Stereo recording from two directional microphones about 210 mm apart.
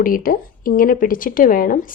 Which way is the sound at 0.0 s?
40° left (ahead or behind).